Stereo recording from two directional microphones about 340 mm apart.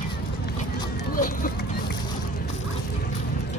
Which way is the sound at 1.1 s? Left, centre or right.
Left.